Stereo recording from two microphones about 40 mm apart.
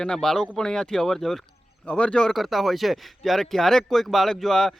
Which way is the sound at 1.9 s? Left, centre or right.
Left.